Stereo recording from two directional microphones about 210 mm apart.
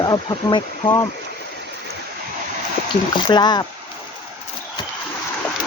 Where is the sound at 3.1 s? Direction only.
20° left (ahead or behind).